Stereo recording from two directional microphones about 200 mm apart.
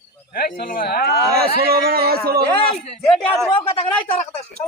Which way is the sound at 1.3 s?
50° right (ahead or behind).